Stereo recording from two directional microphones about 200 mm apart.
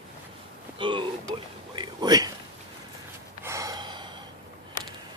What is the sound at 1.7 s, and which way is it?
Whispering, 20° right (ahead or behind).